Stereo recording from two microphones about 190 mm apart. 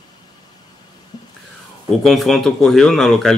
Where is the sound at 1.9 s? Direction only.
Centre (ahead or behind).